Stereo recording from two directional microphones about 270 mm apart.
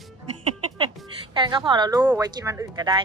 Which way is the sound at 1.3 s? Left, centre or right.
Centre.